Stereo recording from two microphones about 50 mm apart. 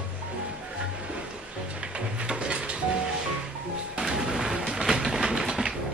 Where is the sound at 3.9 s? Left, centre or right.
Centre.